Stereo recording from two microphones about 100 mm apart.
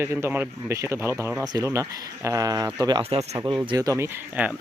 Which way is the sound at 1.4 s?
40° right (ahead or behind).